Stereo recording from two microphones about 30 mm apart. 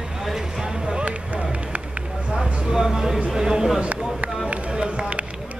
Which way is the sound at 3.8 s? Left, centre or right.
Right.